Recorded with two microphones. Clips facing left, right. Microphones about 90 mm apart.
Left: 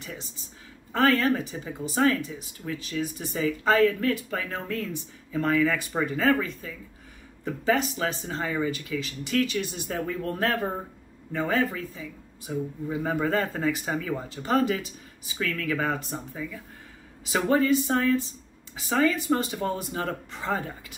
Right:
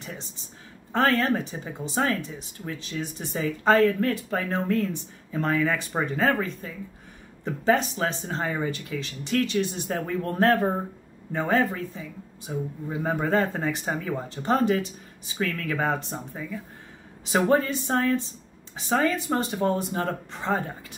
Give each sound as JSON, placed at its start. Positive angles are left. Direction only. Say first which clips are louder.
{"t": 0.9, "sound": "speech", "louder": "even", "side_deg": -30}
{"t": 3.3, "sound": "speech", "louder": "right 1 dB", "side_deg": -40}
{"t": 13.0, "sound": "speech", "louder": "right 2 dB", "side_deg": -30}
{"t": 17.3, "sound": "speech", "louder": "even", "side_deg": -35}